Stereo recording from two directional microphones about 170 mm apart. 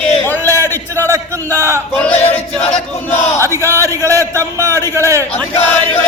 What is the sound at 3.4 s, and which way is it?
Speech, 15° right (ahead or behind).